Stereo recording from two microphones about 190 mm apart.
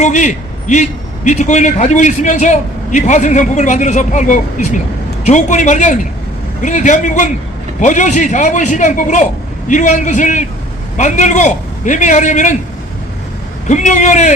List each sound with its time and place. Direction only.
0.0 s a man's voice: 40° left (ahead or behind)
13.7 s a man's voice: 40° left (ahead or behind)